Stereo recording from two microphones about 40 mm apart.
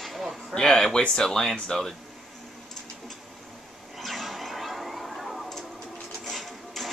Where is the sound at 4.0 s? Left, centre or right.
Centre.